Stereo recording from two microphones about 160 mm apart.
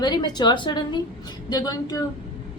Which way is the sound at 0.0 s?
25° left (ahead or behind).